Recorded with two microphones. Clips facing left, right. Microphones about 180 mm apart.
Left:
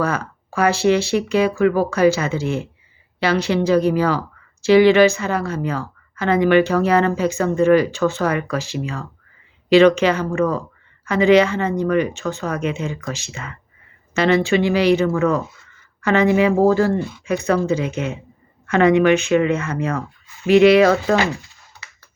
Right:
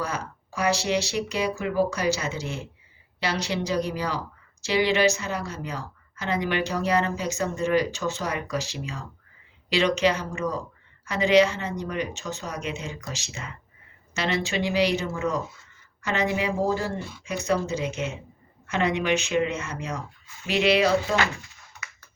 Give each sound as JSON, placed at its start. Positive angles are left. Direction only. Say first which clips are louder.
{"t": 0.0, "sound": "speech", "louder": "left 9 dB", "side_deg": 55}
{"t": 13.3, "sound": "speech", "louder": "left 5 dB", "side_deg": 90}
{"t": 14.1, "sound": "speech", "louder": "left 11 dB", "side_deg": 55}